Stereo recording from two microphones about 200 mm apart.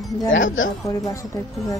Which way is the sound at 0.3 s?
75° left (ahead or behind).